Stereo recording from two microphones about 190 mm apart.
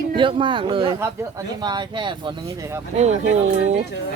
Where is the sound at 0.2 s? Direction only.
25° right (ahead or behind).